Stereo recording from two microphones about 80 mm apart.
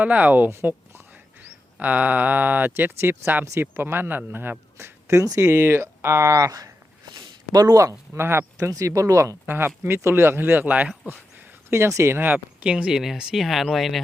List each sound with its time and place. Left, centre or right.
0.0 s speech: centre; by 5.4 s right
5.4 s speech: right
8.1 s speech: right
8.5 s speech: right
9.5 s speech: right
11.1 s speech: right
12.2 s speech: centre